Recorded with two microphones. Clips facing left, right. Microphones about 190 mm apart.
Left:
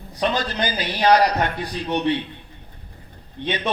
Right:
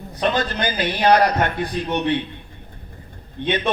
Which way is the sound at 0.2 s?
55° right (ahead or behind).